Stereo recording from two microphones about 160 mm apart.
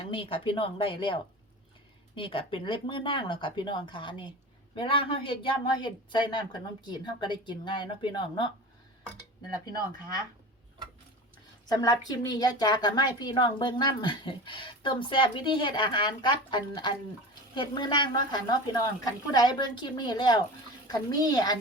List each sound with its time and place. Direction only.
0.0 s a woman's voice: 35° left (ahead or behind)
11.7 s a woman's voice: 25° left (ahead or behind)